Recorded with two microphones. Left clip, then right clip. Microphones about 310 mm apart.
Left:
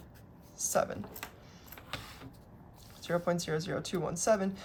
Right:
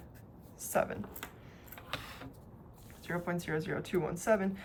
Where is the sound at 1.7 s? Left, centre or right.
Centre.